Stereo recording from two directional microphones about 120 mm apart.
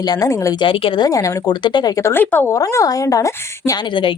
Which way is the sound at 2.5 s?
25° left (ahead or behind).